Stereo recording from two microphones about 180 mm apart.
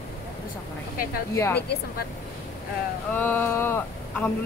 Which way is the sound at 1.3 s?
15° left (ahead or behind).